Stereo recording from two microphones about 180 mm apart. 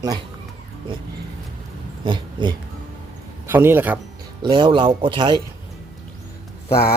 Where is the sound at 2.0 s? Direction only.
25° right (ahead or behind).